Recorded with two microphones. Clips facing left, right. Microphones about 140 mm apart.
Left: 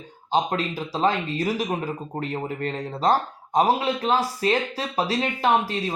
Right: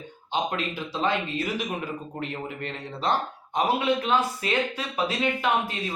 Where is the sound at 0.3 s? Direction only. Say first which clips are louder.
Left 4 dB; 35° left (ahead or behind).